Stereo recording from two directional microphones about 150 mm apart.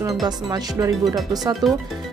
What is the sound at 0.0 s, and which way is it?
Speech, 25° right (ahead or behind).